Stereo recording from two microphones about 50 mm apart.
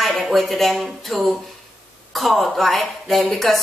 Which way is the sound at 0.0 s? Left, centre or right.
Centre.